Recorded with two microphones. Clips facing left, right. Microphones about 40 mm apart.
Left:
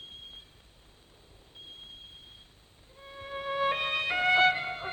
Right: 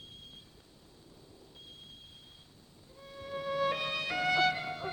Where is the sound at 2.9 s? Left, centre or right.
Left.